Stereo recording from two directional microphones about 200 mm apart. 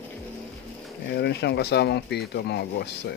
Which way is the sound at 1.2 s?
55° left (ahead or behind).